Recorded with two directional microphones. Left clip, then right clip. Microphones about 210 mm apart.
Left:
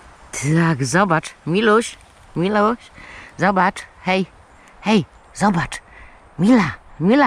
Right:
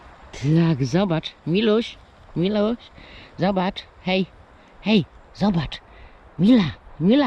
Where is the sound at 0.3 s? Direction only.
20° left (ahead or behind).